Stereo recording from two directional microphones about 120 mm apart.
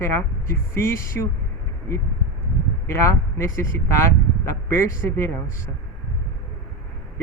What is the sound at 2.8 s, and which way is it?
Speech, 25° left (ahead or behind).